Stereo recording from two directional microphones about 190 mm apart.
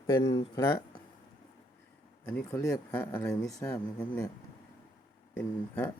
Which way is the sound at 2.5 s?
20° left (ahead or behind).